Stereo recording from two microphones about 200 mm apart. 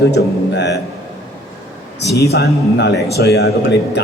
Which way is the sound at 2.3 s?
55° left (ahead or behind).